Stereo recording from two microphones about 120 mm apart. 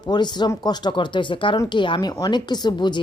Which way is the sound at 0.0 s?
35° left (ahead or behind).